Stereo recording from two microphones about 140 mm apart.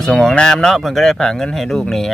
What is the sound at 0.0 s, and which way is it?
Speech, 5° left (ahead or behind).